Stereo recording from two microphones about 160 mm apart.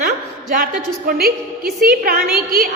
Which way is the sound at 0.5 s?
60° right (ahead or behind).